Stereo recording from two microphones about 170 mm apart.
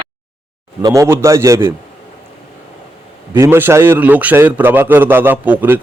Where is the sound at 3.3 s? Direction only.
15° right (ahead or behind).